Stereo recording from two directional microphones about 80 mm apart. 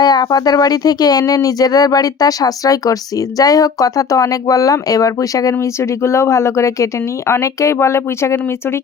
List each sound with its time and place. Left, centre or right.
0.0 s speech: left